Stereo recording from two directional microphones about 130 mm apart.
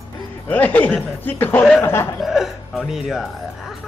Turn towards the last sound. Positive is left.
turn(degrees=0)  # may be behind; listen again after turning